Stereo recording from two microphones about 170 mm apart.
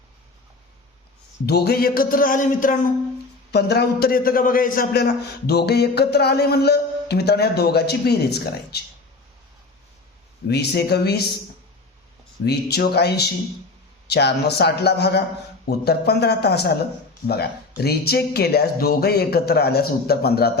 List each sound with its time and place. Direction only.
1.5 s music: 70° left (ahead or behind); by 2.7 s 50° left (ahead or behind)
3.5 s a man's voice: 70° left (ahead or behind)
10.5 s a man's voice: 75° left (ahead or behind)
12.5 s a man's voice: 70° left (ahead or behind)